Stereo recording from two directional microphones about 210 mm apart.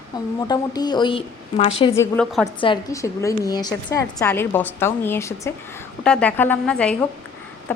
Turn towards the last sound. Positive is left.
turn(degrees=5)  # may be behind; listen again after turning